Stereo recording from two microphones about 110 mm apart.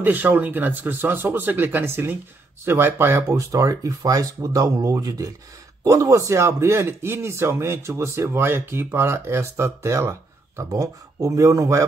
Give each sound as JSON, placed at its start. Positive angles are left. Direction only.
{"t": 0.0, "sound": "a man's voice", "side_deg": -15}